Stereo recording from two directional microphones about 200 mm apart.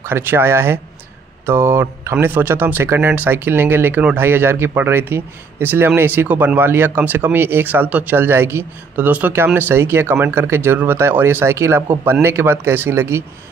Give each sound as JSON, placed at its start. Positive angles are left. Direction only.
{"t": 0.0, "sound": "speech", "side_deg": -10}